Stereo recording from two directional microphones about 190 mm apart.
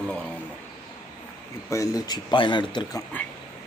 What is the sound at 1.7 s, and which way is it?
Speech, 15° left (ahead or behind).